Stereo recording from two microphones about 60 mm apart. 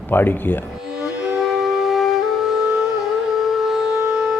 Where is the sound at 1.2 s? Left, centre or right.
Centre.